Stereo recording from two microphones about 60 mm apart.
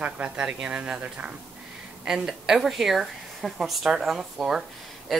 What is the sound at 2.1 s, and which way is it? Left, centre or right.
A woman's voice, centre.